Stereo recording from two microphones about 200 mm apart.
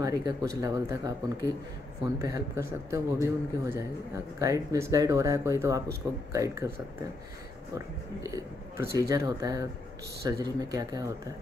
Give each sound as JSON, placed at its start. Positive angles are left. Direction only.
{"t": 0.0, "sound": "a man's voice", "side_deg": -15}
{"t": 7.7, "sound": "a man's voice", "side_deg": -15}